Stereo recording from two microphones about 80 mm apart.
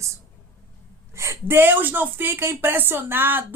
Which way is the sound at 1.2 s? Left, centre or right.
Right.